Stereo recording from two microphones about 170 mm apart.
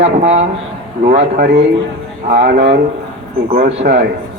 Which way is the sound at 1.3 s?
70° right (ahead or behind).